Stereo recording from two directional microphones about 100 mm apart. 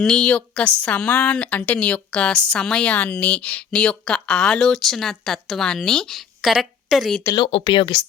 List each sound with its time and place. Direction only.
0.0 s speech: 10° left (ahead or behind)
7.3 s speech: 55° left (ahead or behind)